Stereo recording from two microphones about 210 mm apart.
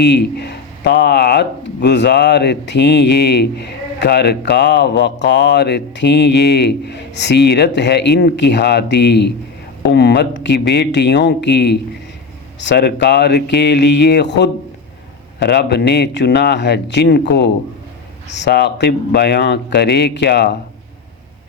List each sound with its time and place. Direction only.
0.0 s speech: 55° left (ahead or behind)